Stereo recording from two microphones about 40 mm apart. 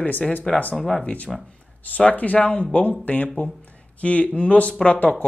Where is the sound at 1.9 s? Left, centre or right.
Left.